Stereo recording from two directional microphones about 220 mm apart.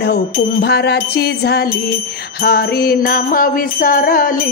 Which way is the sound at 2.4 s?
45° left (ahead or behind).